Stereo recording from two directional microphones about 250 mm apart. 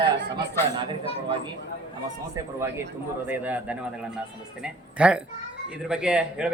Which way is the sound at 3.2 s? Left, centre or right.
Centre.